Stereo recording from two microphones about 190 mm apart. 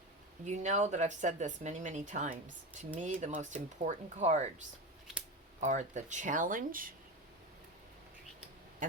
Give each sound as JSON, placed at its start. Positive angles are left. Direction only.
{"t": 0.4, "sound": "speech", "side_deg": -40}
{"t": 5.5, "sound": "speech", "side_deg": -40}
{"t": 8.8, "sound": "speech", "side_deg": -45}